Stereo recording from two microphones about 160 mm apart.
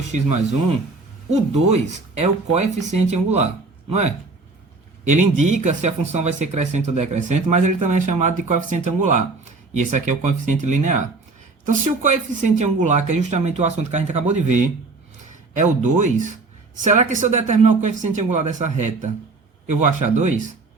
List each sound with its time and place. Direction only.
0.1 s speech: 50° right (ahead or behind)
1.3 s speech: 45° right (ahead or behind)
5.1 s speech: 50° right (ahead or behind)